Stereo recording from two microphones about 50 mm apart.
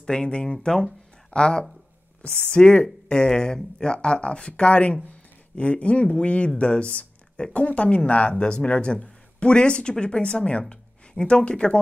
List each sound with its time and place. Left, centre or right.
0.0 s speech: centre